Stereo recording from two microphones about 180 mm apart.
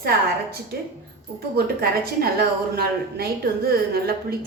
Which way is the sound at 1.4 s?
60° right (ahead or behind).